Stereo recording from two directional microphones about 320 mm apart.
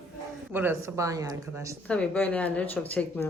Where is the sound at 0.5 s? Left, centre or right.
Centre.